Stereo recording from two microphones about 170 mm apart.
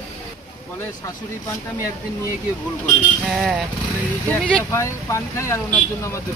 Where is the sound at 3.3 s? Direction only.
5° right (ahead or behind).